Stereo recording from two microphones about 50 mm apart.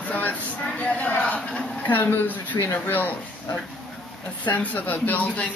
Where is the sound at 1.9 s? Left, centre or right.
Left.